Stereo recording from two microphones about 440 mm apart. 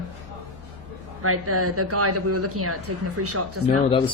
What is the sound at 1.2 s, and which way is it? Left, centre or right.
Speech, right.